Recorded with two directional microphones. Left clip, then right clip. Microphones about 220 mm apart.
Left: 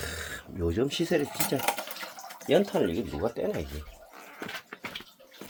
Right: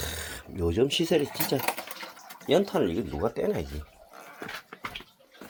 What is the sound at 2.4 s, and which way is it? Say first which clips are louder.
Speech: even; 10° right (ahead or behind).